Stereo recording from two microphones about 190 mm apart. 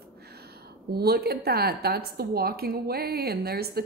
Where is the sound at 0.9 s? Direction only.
55° right (ahead or behind).